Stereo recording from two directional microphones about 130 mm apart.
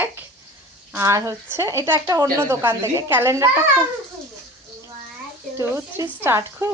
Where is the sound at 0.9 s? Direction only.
25° right (ahead or behind).